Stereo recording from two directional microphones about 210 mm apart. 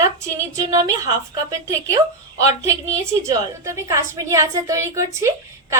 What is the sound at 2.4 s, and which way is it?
A woman's voice, 15° right (ahead or behind).